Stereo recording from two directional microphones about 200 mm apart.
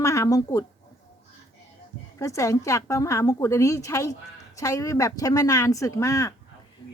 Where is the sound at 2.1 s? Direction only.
15° left (ahead or behind).